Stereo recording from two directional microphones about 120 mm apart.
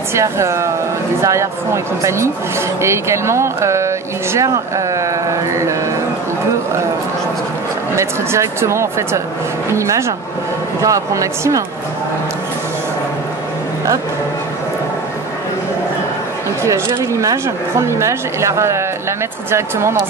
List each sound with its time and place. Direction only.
0.1 s speech: 25° right (ahead or behind)
7.9 s speech: 25° right (ahead or behind)
16.6 s speech: 25° right (ahead or behind)